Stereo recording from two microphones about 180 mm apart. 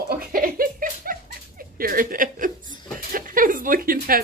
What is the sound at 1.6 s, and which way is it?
Speech, 55° right (ahead or behind).